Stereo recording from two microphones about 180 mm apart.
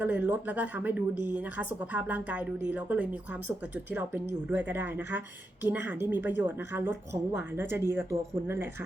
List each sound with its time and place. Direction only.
0.0 s a woman's voice: 10° right (ahead or behind)